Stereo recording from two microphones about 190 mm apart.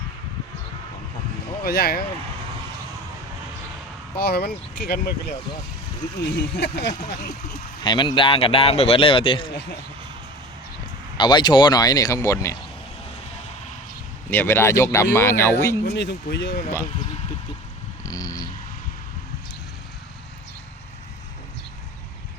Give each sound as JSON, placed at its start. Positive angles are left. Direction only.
{"t": 1.6, "sound": "speech", "side_deg": 55}
{"t": 4.2, "sound": "speech", "side_deg": 55}
{"t": 7.8, "sound": "speech", "side_deg": 25}
{"t": 11.2, "sound": "speech", "side_deg": 25}
{"t": 14.3, "sound": "speech", "side_deg": 10}
{"t": 15.9, "sound": "speech", "side_deg": 60}
{"t": 18.0, "sound": "a sound", "side_deg": 20}